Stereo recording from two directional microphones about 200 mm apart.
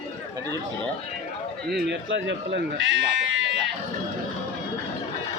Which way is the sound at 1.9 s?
65° right (ahead or behind).